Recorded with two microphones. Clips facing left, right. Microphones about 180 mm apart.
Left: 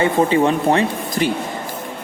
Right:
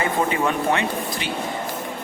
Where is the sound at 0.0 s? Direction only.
30° left (ahead or behind).